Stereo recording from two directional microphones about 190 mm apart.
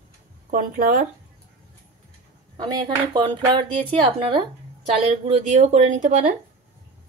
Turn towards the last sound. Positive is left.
turn(degrees=-40)  # may be behind; listen again after turning